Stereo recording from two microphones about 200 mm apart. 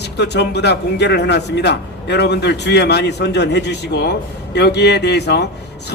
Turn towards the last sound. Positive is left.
turn(degrees=55)  # may be behind; listen again after turning